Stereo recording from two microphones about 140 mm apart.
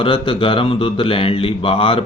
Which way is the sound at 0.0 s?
35° left (ahead or behind).